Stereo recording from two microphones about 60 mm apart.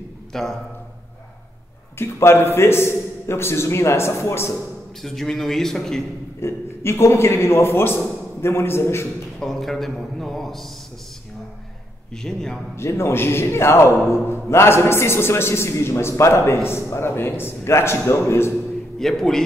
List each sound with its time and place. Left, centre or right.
0.3 s speech: centre
2.0 s a man's voice: left
5.0 s a man's voice: centre
6.4 s a man's voice: left
9.4 s a man's voice: centre
12.2 s a man's voice: centre
12.7 s a man's voice: left
18.9 s a man's voice: centre